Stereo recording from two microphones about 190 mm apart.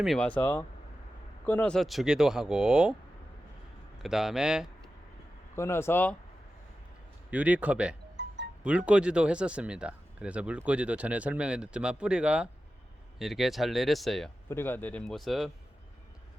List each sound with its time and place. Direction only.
0.0 s speech: centre (ahead or behind)
4.0 s speech: centre (ahead or behind)
5.5 s speech: 15° left (ahead or behind)
7.3 s speech: 5° right (ahead or behind)
8.1 s music: 65° right (ahead or behind)
8.6 s speech: 5° right (ahead or behind)